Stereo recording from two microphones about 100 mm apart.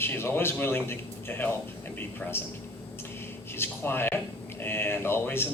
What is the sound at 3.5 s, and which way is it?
Speech, 25° left (ahead or behind).